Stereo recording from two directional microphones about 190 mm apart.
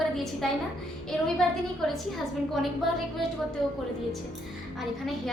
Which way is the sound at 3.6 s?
Centre (ahead or behind).